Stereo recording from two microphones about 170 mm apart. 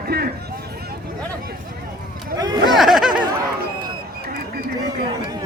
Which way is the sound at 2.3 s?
20° right (ahead or behind).